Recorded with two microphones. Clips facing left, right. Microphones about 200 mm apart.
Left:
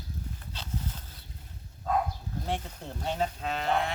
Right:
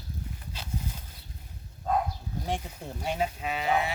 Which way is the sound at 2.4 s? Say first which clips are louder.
Right 1 dB; 10° right (ahead or behind).